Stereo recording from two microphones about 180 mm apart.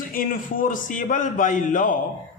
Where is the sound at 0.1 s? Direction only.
50° left (ahead or behind).